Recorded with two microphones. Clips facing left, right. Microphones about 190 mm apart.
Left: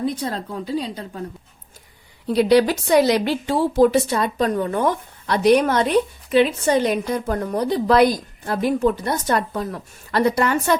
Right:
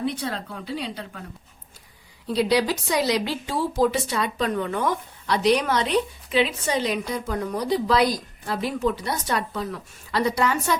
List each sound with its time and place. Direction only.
0.0 s a woman's voice: 40° left (ahead or behind)
2.3 s a woman's voice: 55° left (ahead or behind)